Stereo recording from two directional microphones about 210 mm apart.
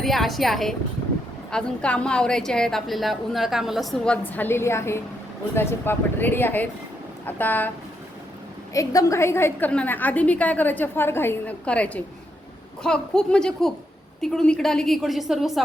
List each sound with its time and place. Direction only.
0.0 s a woman's voice: centre (ahead or behind)
8.7 s a woman's voice: 15° left (ahead or behind); by 15.6 s centre (ahead or behind)